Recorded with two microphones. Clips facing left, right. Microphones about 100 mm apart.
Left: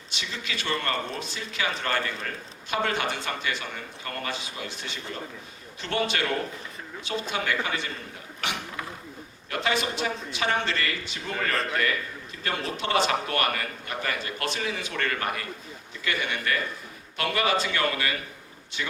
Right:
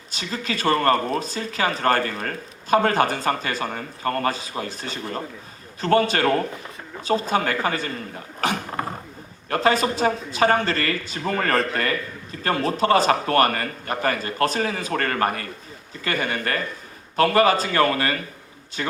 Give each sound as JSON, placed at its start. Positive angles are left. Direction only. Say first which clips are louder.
{"t": 0.1, "sound": "speech", "louder": "right 7 dB", "side_deg": -40}
{"t": 8.4, "sound": "mechanisms", "louder": "right 8 dB", "side_deg": -40}
{"t": 9.5, "sound": "speech", "louder": "right 7 dB", "side_deg": -40}
{"t": 18.8, "sound": "mechanisms", "louder": "right 6 dB", "side_deg": -45}